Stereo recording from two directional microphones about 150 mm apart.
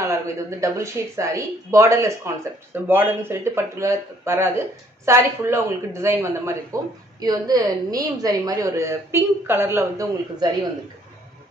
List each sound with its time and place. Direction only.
0.1 s speech: 20° right (ahead or behind)